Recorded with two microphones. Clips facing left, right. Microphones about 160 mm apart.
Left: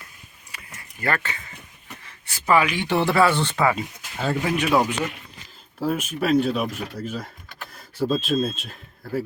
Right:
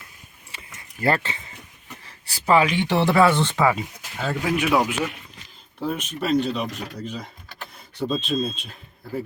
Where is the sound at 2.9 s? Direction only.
15° right (ahead or behind).